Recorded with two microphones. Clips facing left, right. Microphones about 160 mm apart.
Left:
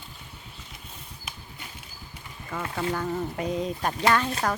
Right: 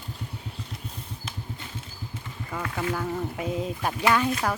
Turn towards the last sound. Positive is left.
turn(degrees=-10)  # may be behind; listen again after turning